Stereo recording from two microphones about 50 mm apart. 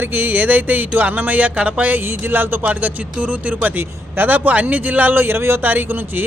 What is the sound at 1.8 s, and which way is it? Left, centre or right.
Speech, right.